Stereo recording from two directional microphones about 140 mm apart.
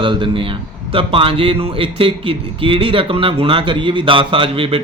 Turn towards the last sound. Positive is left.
turn(degrees=-40)  # may be behind; listen again after turning